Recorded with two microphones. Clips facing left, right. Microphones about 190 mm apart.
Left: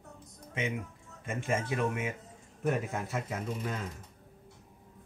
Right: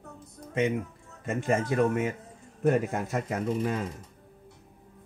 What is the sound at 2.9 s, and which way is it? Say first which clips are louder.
Speech: right 5 dB; 50° right (ahead or behind).